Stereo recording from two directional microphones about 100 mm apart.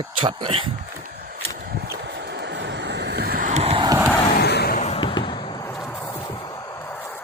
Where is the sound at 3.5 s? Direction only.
90° right.